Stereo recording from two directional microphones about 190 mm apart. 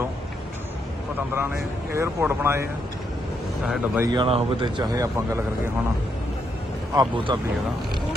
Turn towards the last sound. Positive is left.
turn(degrees=-25)  # may be behind; listen again after turning